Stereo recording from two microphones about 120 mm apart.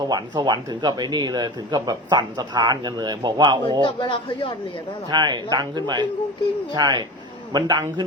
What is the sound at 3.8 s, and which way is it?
Speech, 45° left (ahead or behind).